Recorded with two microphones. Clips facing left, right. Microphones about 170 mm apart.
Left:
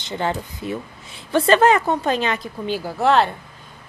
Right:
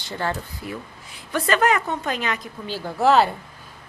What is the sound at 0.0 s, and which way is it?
A woman's voice, 20° left (ahead or behind).